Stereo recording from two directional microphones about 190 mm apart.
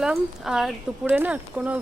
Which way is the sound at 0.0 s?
5° right (ahead or behind).